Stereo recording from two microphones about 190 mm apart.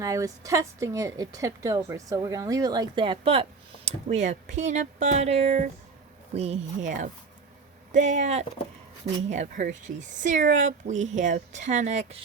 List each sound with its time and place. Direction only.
0.0 s a woman's voice: 15° right (ahead or behind)
3.8 s speech: 40° right (ahead or behind)